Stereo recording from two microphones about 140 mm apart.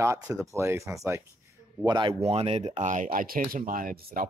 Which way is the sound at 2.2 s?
45° right (ahead or behind).